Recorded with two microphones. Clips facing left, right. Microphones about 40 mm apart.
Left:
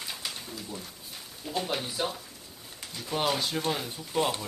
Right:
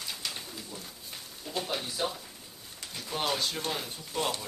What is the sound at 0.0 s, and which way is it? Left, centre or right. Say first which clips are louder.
Pigeon: left 1 dB; centre.